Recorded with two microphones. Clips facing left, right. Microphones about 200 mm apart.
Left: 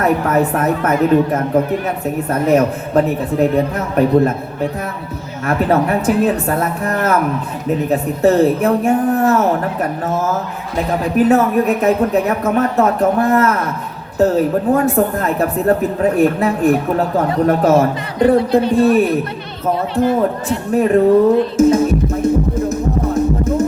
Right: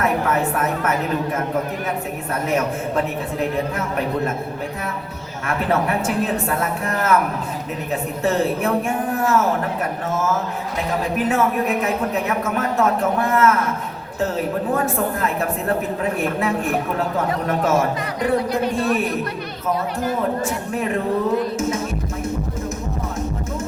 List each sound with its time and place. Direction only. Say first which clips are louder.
0.0 s a woman's voice: left 5 dB; 40° left (ahead or behind)
5.5 s a woman's voice: left 6 dB; 40° left (ahead or behind)
10.8 s a woman's voice: left 8 dB; 35° left (ahead or behind)
20.7 s a woman's voice: left 12 dB; 40° left (ahead or behind)